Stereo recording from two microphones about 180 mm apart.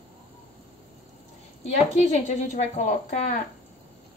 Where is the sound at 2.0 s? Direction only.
40° left (ahead or behind).